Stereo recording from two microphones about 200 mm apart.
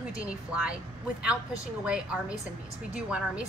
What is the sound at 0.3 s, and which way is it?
Speech, 5° right (ahead or behind).